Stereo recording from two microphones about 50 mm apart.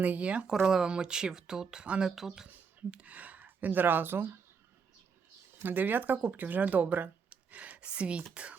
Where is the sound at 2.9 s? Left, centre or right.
Right.